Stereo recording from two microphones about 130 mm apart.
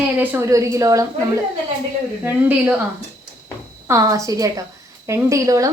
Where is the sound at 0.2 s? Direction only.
20° right (ahead or behind).